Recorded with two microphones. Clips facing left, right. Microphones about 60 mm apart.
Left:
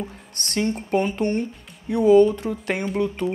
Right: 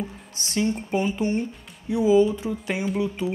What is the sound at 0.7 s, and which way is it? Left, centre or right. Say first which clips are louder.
Speech: even; centre.